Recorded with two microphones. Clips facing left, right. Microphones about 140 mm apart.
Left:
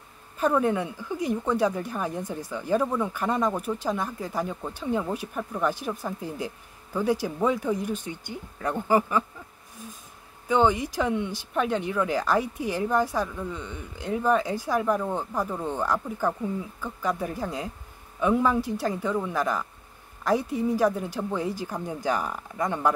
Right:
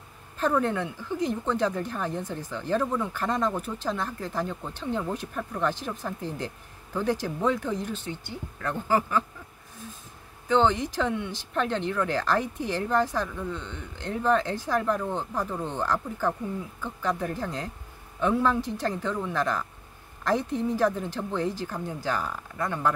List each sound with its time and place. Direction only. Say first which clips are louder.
0.4 s speech: left 2 dB; 10° left (ahead or behind)
10.5 s speech: left 1 dB; 10° left (ahead or behind)